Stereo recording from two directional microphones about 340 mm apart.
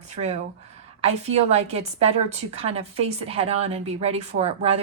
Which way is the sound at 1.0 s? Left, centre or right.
Centre.